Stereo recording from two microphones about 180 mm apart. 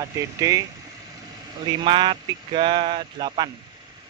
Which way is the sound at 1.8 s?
25° right (ahead or behind).